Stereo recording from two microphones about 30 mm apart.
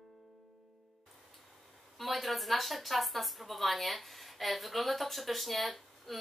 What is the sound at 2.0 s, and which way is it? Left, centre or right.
A woman's voice, centre.